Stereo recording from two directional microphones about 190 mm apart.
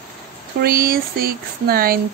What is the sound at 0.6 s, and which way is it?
Speech, 50° right (ahead or behind).